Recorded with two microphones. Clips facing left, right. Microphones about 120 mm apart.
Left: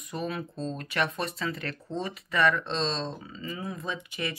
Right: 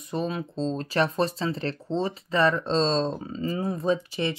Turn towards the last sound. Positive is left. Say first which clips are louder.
# right 9 dB
turn(degrees=-35)  # may be behind; listen again after turning